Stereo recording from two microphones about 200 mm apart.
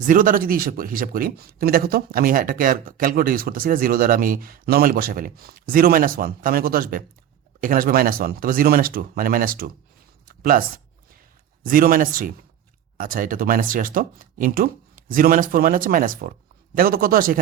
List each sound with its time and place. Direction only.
0.0 s a man's voice: 40° right (ahead or behind)
10.2 s a sound: 45° right (ahead or behind)
11.6 s a man's voice: 45° right (ahead or behind)